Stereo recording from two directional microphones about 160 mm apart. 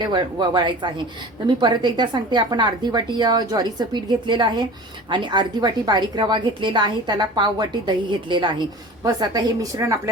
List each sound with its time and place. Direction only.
0.0 s speech: 30° right (ahead or behind)